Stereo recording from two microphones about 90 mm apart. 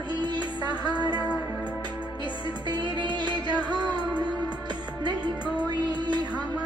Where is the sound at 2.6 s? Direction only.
55° right (ahead or behind).